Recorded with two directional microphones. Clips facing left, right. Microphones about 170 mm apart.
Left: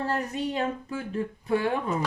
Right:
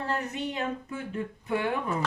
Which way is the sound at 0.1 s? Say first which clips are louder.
Left 3 dB; 35° left (ahead or behind).